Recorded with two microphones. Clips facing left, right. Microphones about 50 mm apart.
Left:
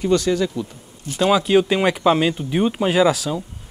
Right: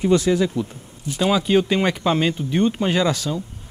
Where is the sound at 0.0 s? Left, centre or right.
Centre.